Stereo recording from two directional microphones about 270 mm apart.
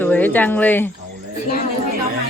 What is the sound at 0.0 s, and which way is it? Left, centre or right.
Speech, centre.